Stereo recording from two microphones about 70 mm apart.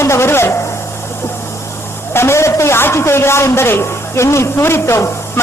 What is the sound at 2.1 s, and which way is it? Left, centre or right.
A man's voice, left.